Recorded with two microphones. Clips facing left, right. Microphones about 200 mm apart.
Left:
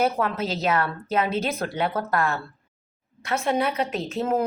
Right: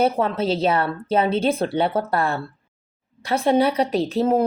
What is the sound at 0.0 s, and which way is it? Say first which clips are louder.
A woman's voice: right 4 dB; 30° right (ahead or behind).